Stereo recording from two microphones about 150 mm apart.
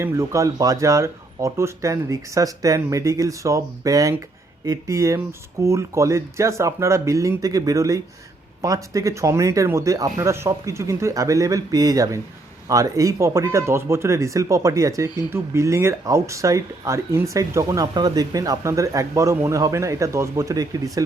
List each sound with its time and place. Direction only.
0.0 s speech: 20° right (ahead or behind)